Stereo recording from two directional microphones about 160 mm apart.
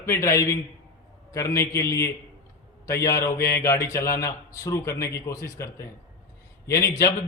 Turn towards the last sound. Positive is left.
turn(degrees=20)  # may be behind; listen again after turning